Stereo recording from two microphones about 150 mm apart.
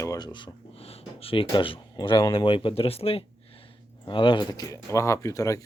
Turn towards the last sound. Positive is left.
turn(degrees=20)  # may be behind; listen again after turning